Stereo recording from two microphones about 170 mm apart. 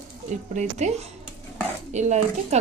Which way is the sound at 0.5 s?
45° right (ahead or behind).